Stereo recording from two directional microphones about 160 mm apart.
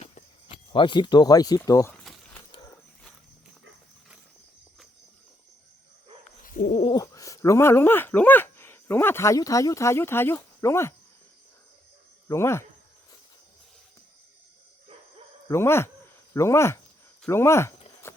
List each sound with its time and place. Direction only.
0.0 s speech: 35° left (ahead or behind); by 1.9 s 20° left (ahead or behind)
1.9 s a sound: 5° left (ahead or behind)
6.4 s bird: 60° left (ahead or behind)
6.8 s speech: 25° left (ahead or behind)
12.3 s speech: 15° left (ahead or behind)
15.4 s speech: 15° left (ahead or behind)
18.0 s clip-clop: 15° left (ahead or behind)